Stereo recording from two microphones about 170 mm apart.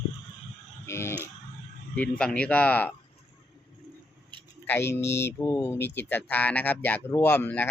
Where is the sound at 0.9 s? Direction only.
15° left (ahead or behind).